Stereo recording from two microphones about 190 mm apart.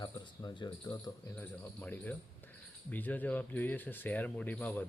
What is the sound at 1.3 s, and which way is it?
Speech, 10° left (ahead or behind).